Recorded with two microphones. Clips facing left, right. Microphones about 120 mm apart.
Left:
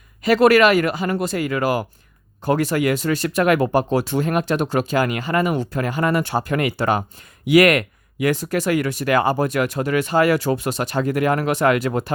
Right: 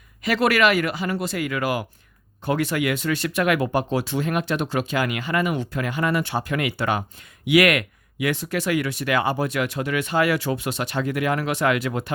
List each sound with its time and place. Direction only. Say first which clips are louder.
0.2 s speech: left 6 dB; 40° left (ahead or behind)